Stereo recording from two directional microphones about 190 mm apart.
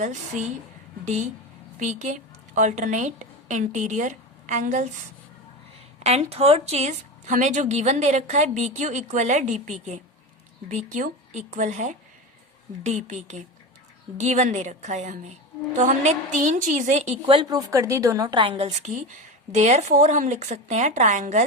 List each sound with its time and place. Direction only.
0.0 s a woman's voice: 40° right (ahead or behind)
6.0 s a woman's voice: 35° right (ahead or behind)